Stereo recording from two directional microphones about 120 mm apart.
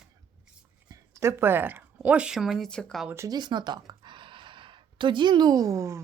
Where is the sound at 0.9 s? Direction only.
25° right (ahead or behind); by 3.1 s 5° left (ahead or behind).